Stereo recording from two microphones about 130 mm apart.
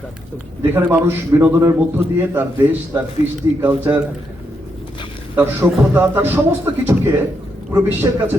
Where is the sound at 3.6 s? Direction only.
15° right (ahead or behind).